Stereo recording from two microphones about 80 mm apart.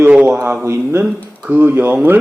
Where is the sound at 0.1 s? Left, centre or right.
Centre.